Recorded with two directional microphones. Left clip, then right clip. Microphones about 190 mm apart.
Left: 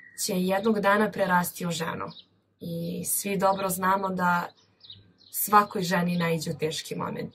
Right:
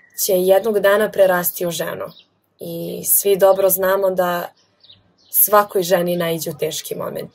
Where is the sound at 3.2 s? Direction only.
5° left (ahead or behind).